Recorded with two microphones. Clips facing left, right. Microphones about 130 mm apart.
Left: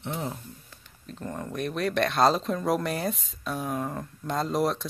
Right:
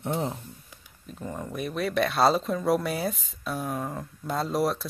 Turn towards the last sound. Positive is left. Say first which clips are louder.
# even
turn(degrees=0)  # may be behind; listen again after turning